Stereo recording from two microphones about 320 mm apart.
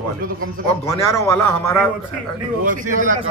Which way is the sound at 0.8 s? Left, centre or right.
Centre.